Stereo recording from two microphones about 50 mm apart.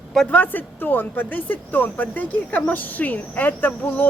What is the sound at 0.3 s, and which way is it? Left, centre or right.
Speech, left.